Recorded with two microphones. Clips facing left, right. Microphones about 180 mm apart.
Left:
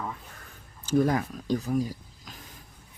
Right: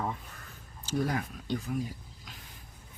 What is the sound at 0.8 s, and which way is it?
Speech, 50° left (ahead or behind).